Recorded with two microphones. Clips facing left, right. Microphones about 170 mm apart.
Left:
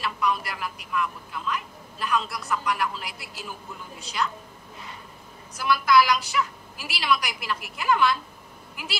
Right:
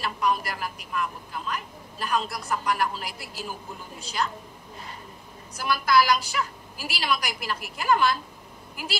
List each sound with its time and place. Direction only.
0.0 s a woman's voice: 40° right (ahead or behind)
5.6 s a woman's voice: 40° right (ahead or behind)